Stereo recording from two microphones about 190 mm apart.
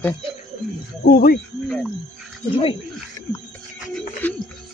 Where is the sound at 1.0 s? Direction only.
50° left (ahead or behind).